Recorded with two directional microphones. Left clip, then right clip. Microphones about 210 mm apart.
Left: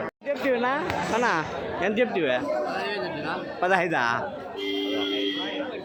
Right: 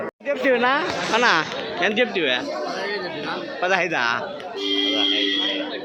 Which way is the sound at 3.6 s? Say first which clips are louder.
Right 2 dB; 20° left (ahead or behind).